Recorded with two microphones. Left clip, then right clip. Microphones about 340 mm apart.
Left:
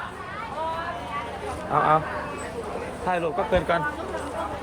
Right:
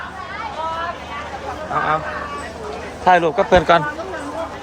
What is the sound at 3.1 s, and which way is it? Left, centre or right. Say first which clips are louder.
Speech: right 11 dB; centre.